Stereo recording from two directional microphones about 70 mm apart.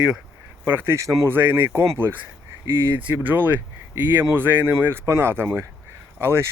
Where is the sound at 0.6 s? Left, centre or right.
Right.